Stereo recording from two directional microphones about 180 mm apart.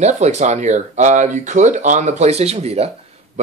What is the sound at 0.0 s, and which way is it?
Speech, 40° right (ahead or behind).